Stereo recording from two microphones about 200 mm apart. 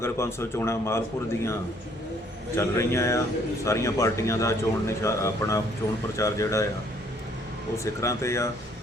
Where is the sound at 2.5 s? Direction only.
15° left (ahead or behind).